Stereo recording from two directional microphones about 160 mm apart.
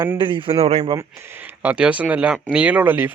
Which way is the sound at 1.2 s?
15° right (ahead or behind).